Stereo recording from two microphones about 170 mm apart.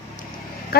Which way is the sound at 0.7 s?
65° left (ahead or behind).